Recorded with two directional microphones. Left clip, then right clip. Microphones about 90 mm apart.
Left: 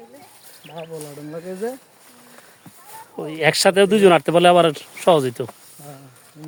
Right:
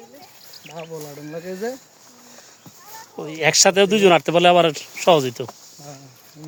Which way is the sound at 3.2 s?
35° left (ahead or behind).